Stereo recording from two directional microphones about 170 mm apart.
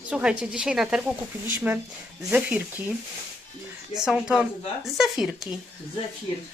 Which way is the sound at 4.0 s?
5° right (ahead or behind).